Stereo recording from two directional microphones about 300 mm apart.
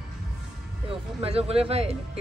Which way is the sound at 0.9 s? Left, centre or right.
Centre.